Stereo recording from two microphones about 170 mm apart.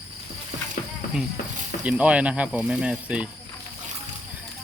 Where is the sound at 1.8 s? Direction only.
5° right (ahead or behind).